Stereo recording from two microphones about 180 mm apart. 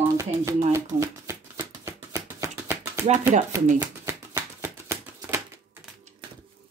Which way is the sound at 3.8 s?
15° right (ahead or behind).